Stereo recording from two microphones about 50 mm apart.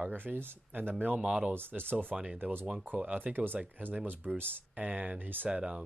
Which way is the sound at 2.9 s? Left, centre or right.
Right.